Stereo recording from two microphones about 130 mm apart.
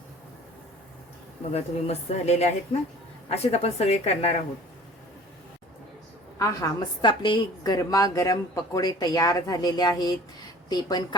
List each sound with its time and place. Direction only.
1.5 s a woman's voice: 55° left (ahead or behind)
6.4 s a woman's voice: 25° left (ahead or behind)